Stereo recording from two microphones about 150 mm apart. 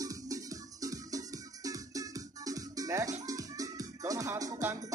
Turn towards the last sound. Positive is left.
turn(degrees=-20)  # may be behind; listen again after turning